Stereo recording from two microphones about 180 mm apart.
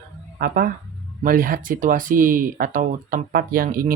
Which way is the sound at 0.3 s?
55° right (ahead or behind).